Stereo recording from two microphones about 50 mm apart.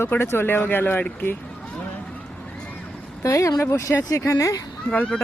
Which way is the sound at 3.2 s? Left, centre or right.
Left.